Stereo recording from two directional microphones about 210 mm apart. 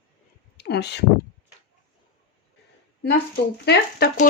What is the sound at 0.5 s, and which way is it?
Speech, 55° left (ahead or behind).